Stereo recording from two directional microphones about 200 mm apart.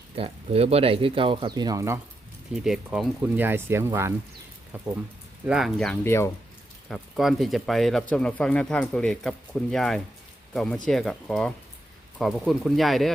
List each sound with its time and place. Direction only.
0.2 s speech: 30° right (ahead or behind)
2.6 s speech: centre (ahead or behind)
5.5 s speech: centre (ahead or behind)
6.9 s speech: centre (ahead or behind)